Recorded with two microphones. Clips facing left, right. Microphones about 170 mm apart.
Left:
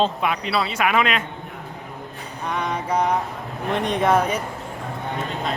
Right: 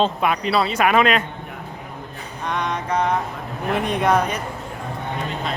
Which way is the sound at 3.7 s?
Centre (ahead or behind).